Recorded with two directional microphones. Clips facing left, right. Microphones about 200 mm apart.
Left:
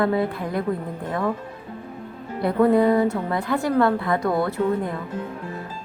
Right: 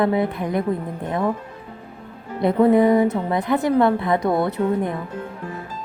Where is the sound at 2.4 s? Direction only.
20° right (ahead or behind).